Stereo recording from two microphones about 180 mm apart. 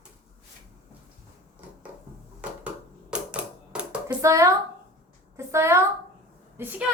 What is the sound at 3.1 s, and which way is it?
Typewriter, 5° right (ahead or behind).